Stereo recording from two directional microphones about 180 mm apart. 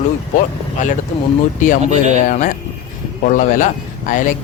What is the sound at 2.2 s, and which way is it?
Speech, 45° left (ahead or behind).